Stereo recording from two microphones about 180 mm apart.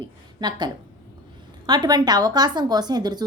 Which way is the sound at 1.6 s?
25° right (ahead or behind).